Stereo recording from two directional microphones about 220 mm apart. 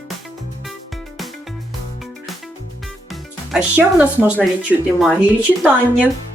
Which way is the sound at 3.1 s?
5° right (ahead or behind).